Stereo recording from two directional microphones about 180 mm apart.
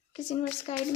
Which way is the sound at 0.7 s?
35° left (ahead or behind).